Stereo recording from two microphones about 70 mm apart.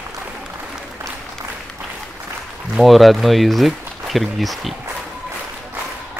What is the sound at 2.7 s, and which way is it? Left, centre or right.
Speech, centre.